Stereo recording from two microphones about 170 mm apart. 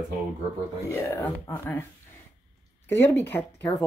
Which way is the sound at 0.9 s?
15° left (ahead or behind).